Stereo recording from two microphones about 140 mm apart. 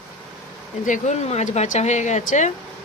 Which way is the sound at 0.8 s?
60° left (ahead or behind).